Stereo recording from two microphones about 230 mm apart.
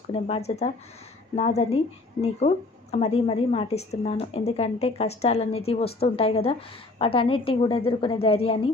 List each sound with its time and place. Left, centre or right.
0.1 s a woman's voice: left